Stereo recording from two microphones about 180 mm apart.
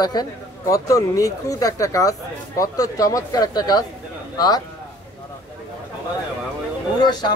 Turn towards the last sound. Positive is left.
turn(degrees=25)  # may be behind; listen again after turning